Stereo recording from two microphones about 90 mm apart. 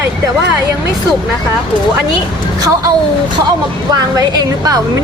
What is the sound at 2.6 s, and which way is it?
Speech, 45° right (ahead or behind).